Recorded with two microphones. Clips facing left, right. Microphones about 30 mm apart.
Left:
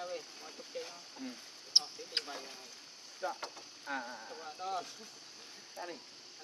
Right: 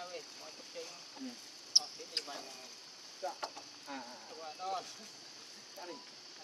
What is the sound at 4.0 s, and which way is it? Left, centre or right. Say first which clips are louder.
Speech: left 5 dB; left.